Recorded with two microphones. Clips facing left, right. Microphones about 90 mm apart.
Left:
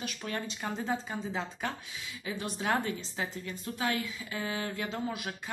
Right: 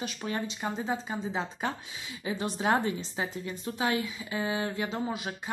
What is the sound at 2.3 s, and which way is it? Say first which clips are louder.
A woman's voice: right 4 dB; 30° right (ahead or behind).